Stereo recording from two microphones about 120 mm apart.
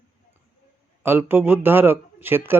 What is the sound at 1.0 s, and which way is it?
Speech, 20° right (ahead or behind).